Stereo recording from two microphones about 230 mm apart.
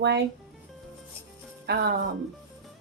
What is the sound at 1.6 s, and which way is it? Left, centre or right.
Speech, right.